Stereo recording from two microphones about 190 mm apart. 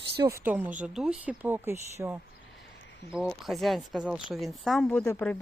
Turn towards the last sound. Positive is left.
turn(degrees=10)  # may be behind; listen again after turning